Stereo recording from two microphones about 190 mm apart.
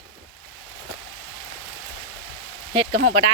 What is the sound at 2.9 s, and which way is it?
Speech, 60° right (ahead or behind).